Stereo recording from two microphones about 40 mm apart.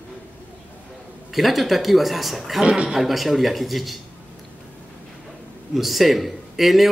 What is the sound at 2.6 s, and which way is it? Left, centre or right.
Speech, right.